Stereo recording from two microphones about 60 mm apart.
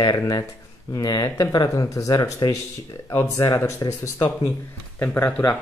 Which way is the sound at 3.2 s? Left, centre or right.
Left.